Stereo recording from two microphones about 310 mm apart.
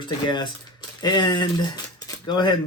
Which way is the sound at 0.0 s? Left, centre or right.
Centre.